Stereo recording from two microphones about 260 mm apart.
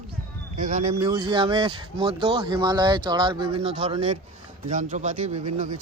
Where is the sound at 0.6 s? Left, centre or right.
Right.